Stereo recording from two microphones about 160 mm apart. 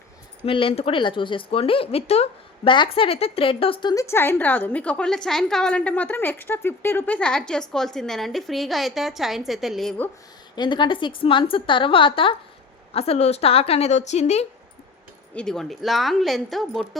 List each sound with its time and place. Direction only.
0.4 s a woman's voice: 35° left (ahead or behind); by 9.9 s centre (ahead or behind)
10.5 s a woman's voice: 25° left (ahead or behind); by 14.4 s 45° left (ahead or behind)
15.4 s a woman's voice: 5° left (ahead or behind)